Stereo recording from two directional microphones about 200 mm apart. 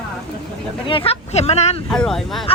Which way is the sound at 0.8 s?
25° left (ahead or behind).